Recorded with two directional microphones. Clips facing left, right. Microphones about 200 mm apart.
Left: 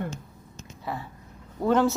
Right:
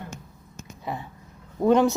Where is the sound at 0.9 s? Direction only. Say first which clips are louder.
Right 1 dB; 20° right (ahead or behind).